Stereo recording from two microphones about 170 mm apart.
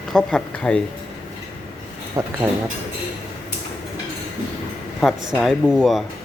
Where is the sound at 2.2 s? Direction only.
20° right (ahead or behind).